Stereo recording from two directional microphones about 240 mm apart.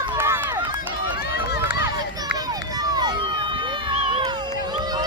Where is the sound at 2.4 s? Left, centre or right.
Centre.